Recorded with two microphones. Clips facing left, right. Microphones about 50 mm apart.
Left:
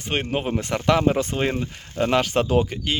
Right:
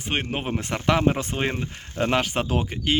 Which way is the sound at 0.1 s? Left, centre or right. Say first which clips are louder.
Left 3 dB; centre.